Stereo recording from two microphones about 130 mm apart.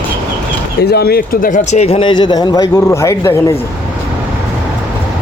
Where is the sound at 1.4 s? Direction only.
85° left; by 3.3 s 25° left (ahead or behind).